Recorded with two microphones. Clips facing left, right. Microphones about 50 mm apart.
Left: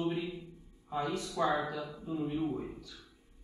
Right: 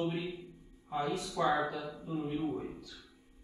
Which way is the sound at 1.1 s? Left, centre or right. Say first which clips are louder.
Even; right.